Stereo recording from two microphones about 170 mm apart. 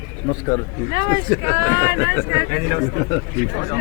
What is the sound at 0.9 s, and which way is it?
Speech, 25° right (ahead or behind).